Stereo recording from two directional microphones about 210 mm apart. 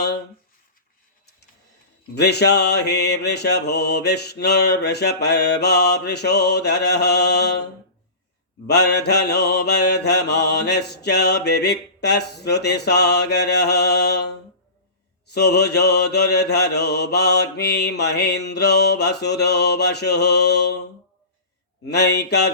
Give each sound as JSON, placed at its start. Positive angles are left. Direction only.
{"t": 2.1, "sound": "mantra", "side_deg": 50}
{"t": 21.8, "sound": "mantra", "side_deg": 55}